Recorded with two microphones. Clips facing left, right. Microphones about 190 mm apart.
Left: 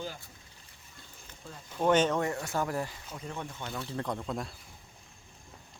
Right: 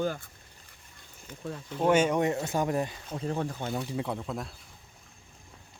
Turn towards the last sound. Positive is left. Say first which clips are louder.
# right 1 dB
turn(degrees=0)  # may be behind; listen again after turning